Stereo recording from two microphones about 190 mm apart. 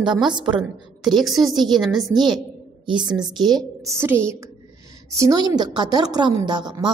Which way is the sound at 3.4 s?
20° right (ahead or behind).